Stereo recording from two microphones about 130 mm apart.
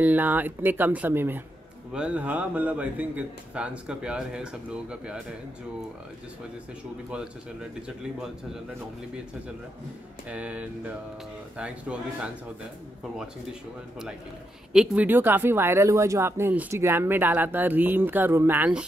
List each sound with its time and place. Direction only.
0.0 s speech: 15° right (ahead or behind)
10.3 s speech: 10° right (ahead or behind)